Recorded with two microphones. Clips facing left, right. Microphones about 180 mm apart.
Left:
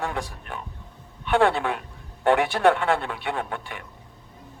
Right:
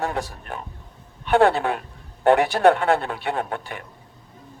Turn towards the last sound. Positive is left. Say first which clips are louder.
# right 3 dB
turn(degrees=-40)  # may be behind; listen again after turning